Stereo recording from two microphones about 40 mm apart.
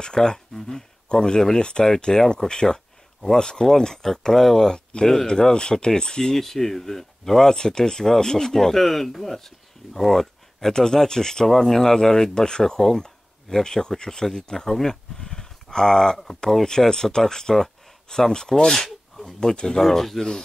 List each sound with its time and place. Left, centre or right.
0.0 s speech: centre
4.7 s speech: left
6.4 s speech: centre
18.9 s a sound: centre
19.4 s speech: centre